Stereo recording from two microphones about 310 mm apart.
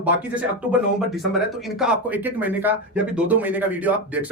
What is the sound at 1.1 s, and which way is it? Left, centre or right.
Speech, centre.